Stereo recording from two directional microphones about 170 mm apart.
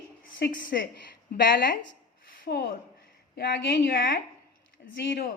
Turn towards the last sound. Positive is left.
turn(degrees=60)  # may be behind; listen again after turning